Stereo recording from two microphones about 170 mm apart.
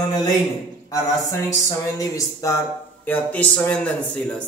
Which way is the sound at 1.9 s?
20° left (ahead or behind).